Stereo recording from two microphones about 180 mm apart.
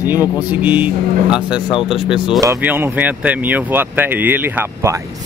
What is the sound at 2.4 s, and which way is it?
Speech, 15° right (ahead or behind).